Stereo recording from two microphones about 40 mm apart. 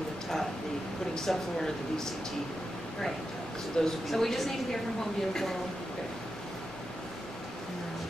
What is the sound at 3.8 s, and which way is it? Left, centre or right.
Speech, centre.